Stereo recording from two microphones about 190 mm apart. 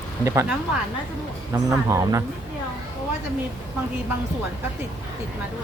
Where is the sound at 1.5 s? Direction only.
15° right (ahead or behind).